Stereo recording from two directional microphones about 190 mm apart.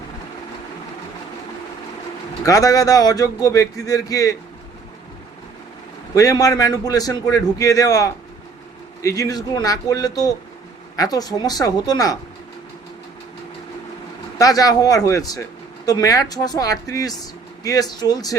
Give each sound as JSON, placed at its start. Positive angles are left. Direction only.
{"t": 2.4, "sound": "a man's voice", "side_deg": 20}
{"t": 6.1, "sound": "a man's voice", "side_deg": 20}
{"t": 14.3, "sound": "a man's voice", "side_deg": 20}